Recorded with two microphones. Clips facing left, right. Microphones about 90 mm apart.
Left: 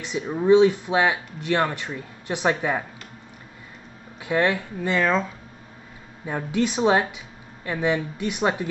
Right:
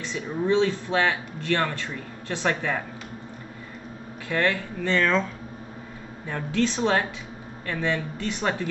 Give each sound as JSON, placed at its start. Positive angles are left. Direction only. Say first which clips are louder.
{"t": 0.0, "sound": "speech", "louder": "left 3 dB", "side_deg": 15}
{"t": 4.3, "sound": "speech", "louder": "left 3 dB", "side_deg": 15}